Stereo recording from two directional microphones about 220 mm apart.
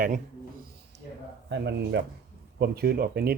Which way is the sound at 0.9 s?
50° right (ahead or behind).